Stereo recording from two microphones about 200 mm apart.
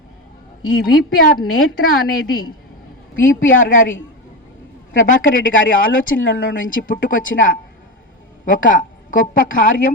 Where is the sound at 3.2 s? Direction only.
75° left (ahead or behind).